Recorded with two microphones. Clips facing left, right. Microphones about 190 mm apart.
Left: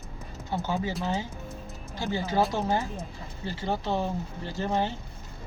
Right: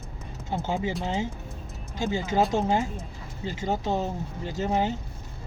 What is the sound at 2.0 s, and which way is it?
Speech, 15° right (ahead or behind).